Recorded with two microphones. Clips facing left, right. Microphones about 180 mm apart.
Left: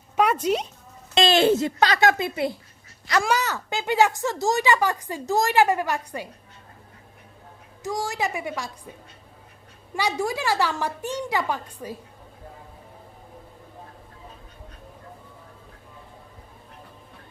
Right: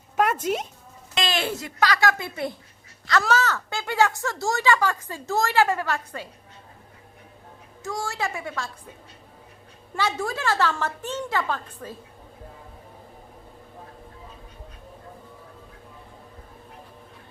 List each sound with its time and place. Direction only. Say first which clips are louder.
1.1 s speech: left 9 dB; 30° left (ahead or behind)
7.9 s speech: left 2 dB; 20° left (ahead or behind)
9.9 s speech: left 2 dB; 15° left (ahead or behind)